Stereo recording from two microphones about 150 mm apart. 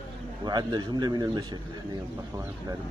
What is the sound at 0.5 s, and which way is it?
A man's voice, 25° right (ahead or behind).